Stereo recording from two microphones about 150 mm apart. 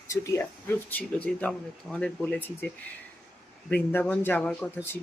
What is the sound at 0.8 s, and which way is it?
Speech, 10° left (ahead or behind).